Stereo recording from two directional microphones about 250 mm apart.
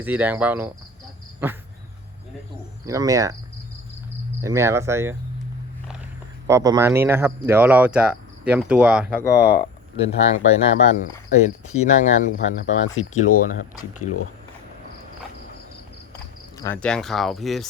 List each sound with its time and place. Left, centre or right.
0.0 s speech: centre
2.8 s speech: centre
4.4 s speech: centre
6.5 s speech: centre
9.3 s speech: left
10.0 s speech: left
14.0 s speech: left
16.6 s speech: centre